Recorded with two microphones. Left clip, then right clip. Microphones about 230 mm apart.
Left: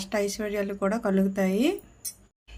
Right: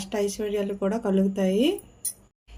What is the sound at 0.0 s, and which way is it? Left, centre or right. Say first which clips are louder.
Speech: right 1 dB; centre.